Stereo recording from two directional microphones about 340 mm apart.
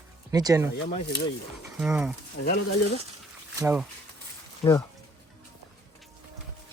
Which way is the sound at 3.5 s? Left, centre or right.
Centre.